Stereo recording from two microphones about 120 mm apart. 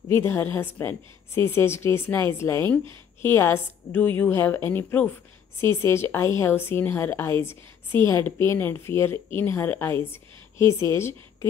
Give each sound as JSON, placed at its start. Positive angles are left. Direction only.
{"t": 0.1, "sound": "a woman's voice", "side_deg": 20}